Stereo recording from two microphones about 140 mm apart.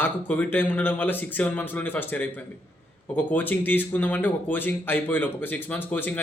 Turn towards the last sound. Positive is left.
turn(degrees=15)  # may be behind; listen again after turning